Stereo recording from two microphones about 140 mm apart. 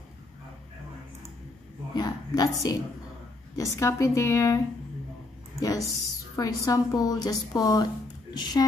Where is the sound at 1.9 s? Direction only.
30° left (ahead or behind).